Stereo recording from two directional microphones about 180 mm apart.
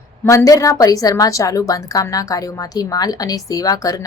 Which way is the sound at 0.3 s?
20° left (ahead or behind).